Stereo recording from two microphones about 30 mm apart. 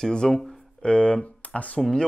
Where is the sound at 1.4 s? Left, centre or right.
Left.